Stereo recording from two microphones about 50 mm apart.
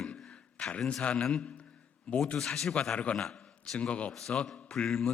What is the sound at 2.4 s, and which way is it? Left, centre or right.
Speech, centre.